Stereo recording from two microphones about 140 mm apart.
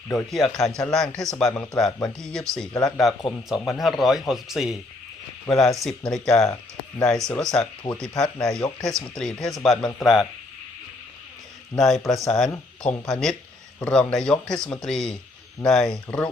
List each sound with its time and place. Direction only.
0.3 s speech: centre (ahead or behind)
7.5 s speech: 5° left (ahead or behind)
11.7 s speech: centre (ahead or behind)